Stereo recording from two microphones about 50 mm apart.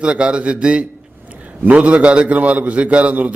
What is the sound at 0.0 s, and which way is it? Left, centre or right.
A man's voice, right.